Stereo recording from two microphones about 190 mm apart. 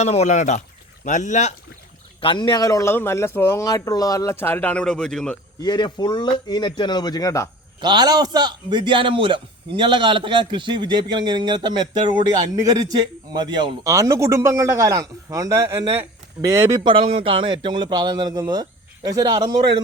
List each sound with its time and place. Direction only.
0.0 s speech: 35° left (ahead or behind)
2.2 s speech: 25° left (ahead or behind); by 5.4 s 5° left (ahead or behind)
5.5 s speech: 25° left (ahead or behind)
7.8 s a man's voice: 25° right (ahead or behind)
13.3 s a man's voice: 20° right (ahead or behind)